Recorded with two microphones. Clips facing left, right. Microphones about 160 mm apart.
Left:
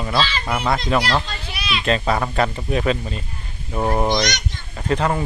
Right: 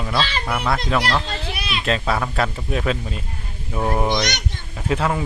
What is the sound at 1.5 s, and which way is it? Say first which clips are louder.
Children playing: left 2 dB; 50° right (ahead or behind).